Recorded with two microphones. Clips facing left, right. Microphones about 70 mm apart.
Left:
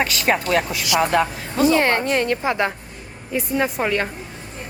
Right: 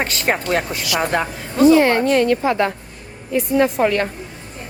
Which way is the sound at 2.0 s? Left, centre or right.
Left.